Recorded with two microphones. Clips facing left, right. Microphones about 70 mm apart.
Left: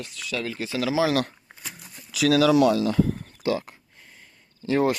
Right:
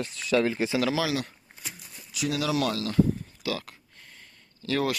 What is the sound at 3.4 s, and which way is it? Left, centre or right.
Speech, left.